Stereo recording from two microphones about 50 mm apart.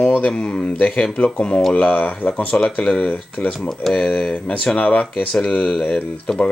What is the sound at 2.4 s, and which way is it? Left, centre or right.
Speech, centre.